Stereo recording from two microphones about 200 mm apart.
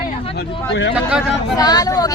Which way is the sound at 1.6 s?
20° left (ahead or behind).